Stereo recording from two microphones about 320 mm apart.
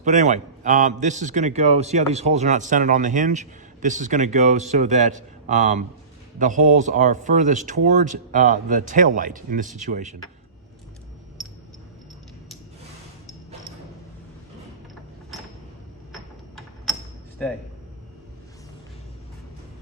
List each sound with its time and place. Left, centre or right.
0.0 s a man's voice: right
11.4 s a sound: centre
17.4 s speech: centre